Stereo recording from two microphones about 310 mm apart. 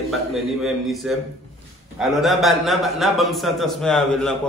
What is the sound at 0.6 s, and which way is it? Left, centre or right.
Speech, centre.